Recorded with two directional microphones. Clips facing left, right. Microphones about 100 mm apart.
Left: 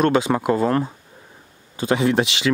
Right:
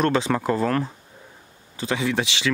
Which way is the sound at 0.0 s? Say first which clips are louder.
Left 3 dB; 15° left (ahead or behind).